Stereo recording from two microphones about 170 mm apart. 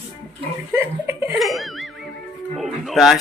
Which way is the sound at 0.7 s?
15° right (ahead or behind).